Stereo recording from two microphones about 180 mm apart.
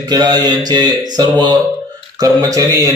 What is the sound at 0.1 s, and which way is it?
Speech, 25° right (ahead or behind).